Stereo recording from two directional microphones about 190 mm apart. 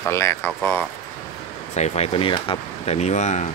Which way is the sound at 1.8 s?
30° left (ahead or behind).